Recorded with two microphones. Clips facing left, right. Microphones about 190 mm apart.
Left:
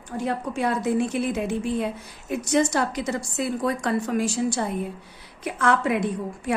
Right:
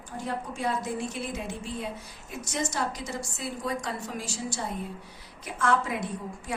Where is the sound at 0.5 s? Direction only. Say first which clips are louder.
Left 8 dB; 65° left (ahead or behind).